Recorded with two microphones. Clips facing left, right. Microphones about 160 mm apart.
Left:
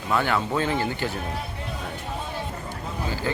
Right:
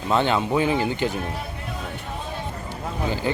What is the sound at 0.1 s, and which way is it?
Speech, 20° right (ahead or behind).